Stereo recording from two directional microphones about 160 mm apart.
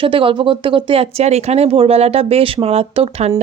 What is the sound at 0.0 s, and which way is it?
Speech, 35° right (ahead or behind).